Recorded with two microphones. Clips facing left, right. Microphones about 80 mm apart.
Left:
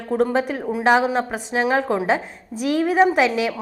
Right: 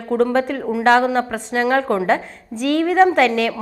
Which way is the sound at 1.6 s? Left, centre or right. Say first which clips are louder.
Right 2 dB; right.